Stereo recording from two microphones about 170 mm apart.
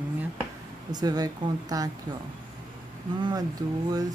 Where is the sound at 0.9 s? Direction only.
25° right (ahead or behind).